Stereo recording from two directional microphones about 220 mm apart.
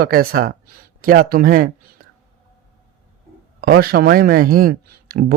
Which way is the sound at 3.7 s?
45° right (ahead or behind).